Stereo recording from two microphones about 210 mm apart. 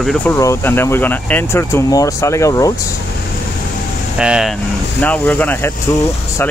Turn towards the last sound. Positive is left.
turn(degrees=10)  # may be behind; listen again after turning